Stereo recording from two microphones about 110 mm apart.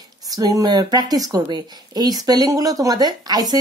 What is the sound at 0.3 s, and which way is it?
Speech, 35° right (ahead or behind).